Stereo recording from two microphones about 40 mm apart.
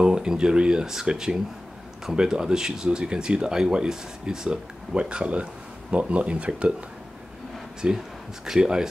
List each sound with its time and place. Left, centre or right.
0.0 s speech: right
7.8 s speech: centre